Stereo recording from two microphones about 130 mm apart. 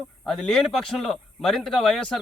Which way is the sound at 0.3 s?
5° left (ahead or behind).